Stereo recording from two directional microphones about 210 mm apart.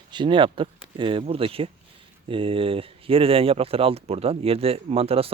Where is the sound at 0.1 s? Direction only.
20° right (ahead or behind).